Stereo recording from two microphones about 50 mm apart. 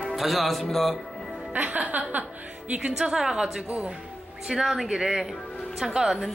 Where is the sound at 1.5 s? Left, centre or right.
Right.